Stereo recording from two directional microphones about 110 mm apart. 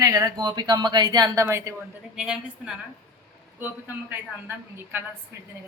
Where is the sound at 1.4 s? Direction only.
25° right (ahead or behind).